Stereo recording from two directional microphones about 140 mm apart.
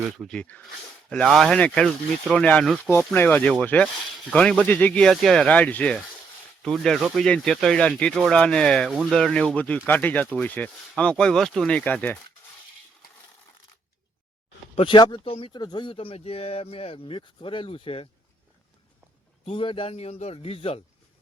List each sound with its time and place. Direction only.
0.2 s speech: 5° left (ahead or behind)
3.0 s speech: 10° left (ahead or behind)
8.9 s speech: 5° right (ahead or behind)
9.1 s speech: 5° left (ahead or behind)
14.8 s speech: 35° left (ahead or behind)
19.5 s a man's voice: 40° left (ahead or behind)